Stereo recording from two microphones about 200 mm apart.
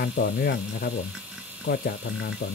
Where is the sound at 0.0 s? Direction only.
50° left (ahead or behind).